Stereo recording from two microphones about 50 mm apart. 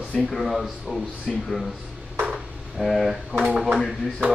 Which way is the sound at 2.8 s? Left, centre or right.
Centre.